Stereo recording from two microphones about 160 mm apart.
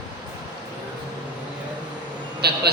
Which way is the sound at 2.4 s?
90° right.